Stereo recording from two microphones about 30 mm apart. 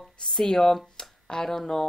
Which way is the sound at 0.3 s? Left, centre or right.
Centre.